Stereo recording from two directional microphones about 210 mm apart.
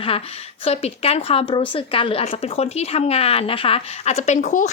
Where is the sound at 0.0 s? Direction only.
25° left (ahead or behind).